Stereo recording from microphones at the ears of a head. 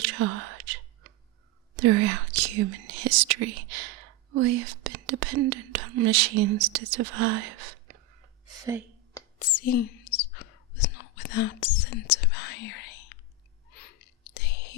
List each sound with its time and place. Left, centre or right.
0.0 s whispering: right
1.7 s speech: right
9.4 s whispering: left